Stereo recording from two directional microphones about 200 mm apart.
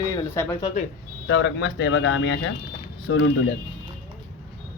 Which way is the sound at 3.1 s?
90° left.